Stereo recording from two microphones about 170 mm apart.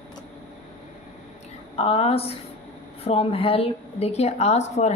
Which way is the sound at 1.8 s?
35° left (ahead or behind).